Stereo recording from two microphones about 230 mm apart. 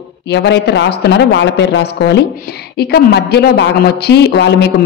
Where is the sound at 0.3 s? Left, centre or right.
Left.